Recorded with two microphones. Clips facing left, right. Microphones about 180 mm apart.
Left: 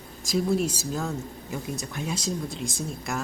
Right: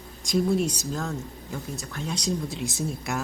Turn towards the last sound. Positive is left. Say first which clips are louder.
# right 2 dB
turn(degrees=0)  # may be behind; listen again after turning